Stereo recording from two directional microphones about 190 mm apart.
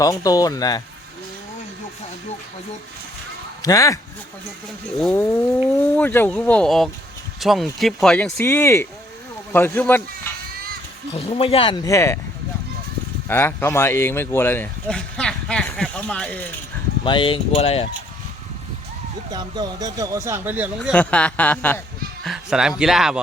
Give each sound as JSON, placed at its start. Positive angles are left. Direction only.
{"t": 0.0, "sound": "speech", "side_deg": 20}
{"t": 3.6, "sound": "speech", "side_deg": 20}
{"t": 5.1, "sound": "speech", "side_deg": 15}
{"t": 11.1, "sound": "speech", "side_deg": 30}
{"t": 13.2, "sound": "speech", "side_deg": 10}
{"t": 17.0, "sound": "speech", "side_deg": 25}
{"t": 19.3, "sound": "speech", "side_deg": -20}
{"t": 20.9, "sound": "speech", "side_deg": 5}
{"t": 22.2, "sound": "speech", "side_deg": 0}